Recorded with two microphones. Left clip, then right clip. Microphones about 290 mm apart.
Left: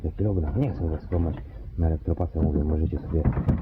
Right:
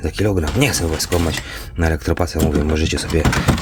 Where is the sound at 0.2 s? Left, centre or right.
Centre.